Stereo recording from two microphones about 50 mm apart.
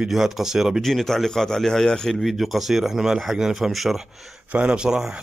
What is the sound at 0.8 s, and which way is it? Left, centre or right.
A man's voice, centre.